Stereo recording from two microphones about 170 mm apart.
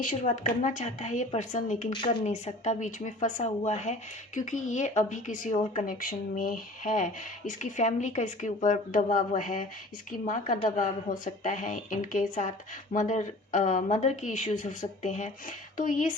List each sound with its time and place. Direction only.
0.3 s speech: 45° left (ahead or behind)